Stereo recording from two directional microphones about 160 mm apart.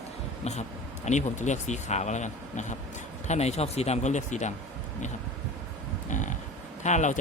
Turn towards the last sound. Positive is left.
turn(degrees=50)  # may be behind; listen again after turning